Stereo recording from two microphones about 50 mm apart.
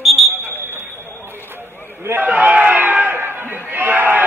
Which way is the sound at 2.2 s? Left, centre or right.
Right.